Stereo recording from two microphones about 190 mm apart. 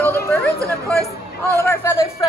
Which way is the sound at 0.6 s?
15° right (ahead or behind).